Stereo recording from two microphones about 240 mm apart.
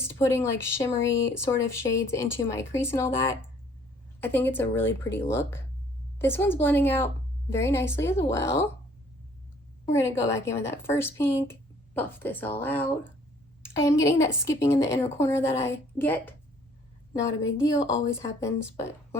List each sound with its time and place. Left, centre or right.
0.0 s a woman's voice: centre
9.8 s a woman's voice: centre
17.7 s speech: left
18.0 s a woman's voice: centre